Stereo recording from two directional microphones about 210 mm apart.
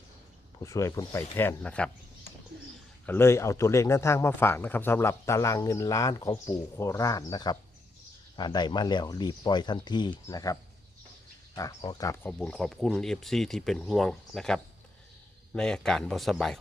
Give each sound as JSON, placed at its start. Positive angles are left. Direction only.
{"t": 0.6, "sound": "speech", "side_deg": 15}
{"t": 3.1, "sound": "speech", "side_deg": 10}
{"t": 11.8, "sound": "speech", "side_deg": 20}
{"t": 12.3, "sound": "speech", "side_deg": 5}